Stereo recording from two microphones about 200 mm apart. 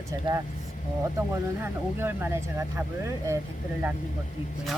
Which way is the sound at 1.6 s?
10° right (ahead or behind).